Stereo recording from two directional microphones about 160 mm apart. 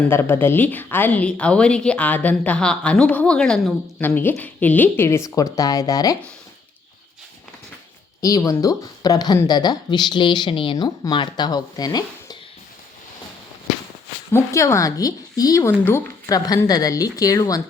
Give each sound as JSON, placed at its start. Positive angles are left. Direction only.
{"t": 0.1, "sound": "a woman's voice", "side_deg": 15}
{"t": 8.2, "sound": "speech", "side_deg": 20}
{"t": 14.3, "sound": "speech", "side_deg": 20}